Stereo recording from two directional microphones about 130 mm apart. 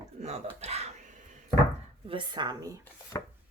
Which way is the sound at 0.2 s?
55° right (ahead or behind).